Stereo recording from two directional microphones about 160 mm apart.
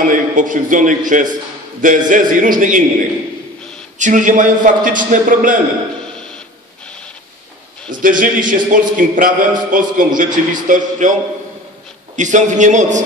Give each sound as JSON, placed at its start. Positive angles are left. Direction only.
{"t": 0.0, "sound": "a man's voice", "side_deg": -55}
{"t": 4.0, "sound": "a man's voice", "side_deg": -55}
{"t": 7.9, "sound": "a man's voice", "side_deg": -55}
{"t": 12.2, "sound": "a man's voice", "side_deg": -50}